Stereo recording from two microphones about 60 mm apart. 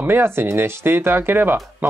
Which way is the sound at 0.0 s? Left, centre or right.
Right.